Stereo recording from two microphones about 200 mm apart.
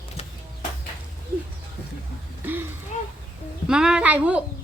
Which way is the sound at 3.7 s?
5° right (ahead or behind).